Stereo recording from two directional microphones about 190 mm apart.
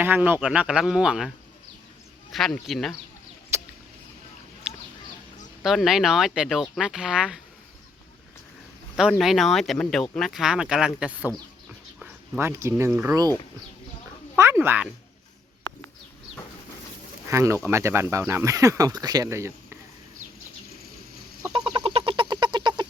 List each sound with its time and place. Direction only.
0.0 s speech: 10° right (ahead or behind)
2.3 s speech: centre (ahead or behind)
3.5 s a sound: 15° right (ahead or behind)
5.6 s speech: centre (ahead or behind)
9.0 s speech: centre (ahead or behind)
11.9 s a sound: centre (ahead or behind)
12.4 s speech: 15° right (ahead or behind)
14.3 s speech: 15° right (ahead or behind)
17.2 s speech: 15° right (ahead or behind)
21.7 s frog: 30° right (ahead or behind)